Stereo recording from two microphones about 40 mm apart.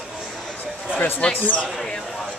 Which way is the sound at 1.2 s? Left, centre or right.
Left.